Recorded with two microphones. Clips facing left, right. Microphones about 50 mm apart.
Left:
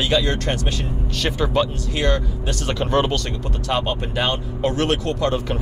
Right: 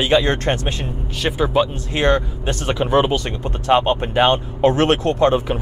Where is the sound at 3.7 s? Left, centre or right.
Right.